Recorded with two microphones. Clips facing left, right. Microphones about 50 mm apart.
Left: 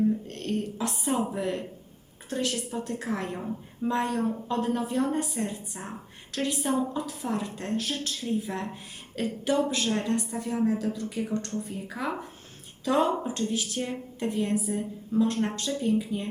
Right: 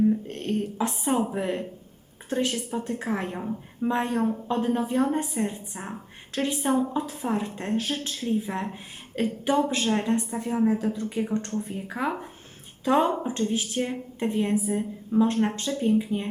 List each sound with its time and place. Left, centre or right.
0.3 s a woman's voice: right